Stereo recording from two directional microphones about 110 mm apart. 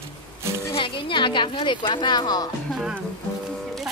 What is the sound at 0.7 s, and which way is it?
Speech, 50° left (ahead or behind).